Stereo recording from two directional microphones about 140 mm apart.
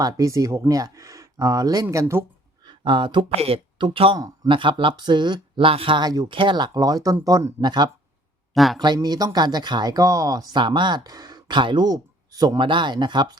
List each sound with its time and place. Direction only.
0.0 s speech: 25° right (ahead or behind)
2.6 s speech: 35° right (ahead or behind)
8.5 s speech: centre (ahead or behind)
8.8 s speech: 30° right (ahead or behind)